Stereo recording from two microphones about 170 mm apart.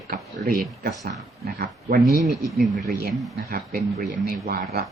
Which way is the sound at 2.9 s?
60° right (ahead or behind).